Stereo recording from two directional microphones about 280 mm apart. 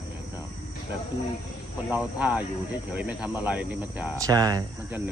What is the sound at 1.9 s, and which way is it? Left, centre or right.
Speech, centre.